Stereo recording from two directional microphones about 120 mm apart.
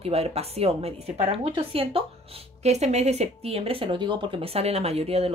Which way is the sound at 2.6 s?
65° right (ahead or behind).